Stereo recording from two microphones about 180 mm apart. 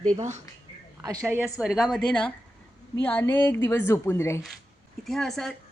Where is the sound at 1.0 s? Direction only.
15° right (ahead or behind); by 4.4 s 15° left (ahead or behind).